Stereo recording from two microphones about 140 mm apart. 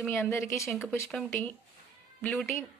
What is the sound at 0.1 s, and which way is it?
Speech, 15° left (ahead or behind).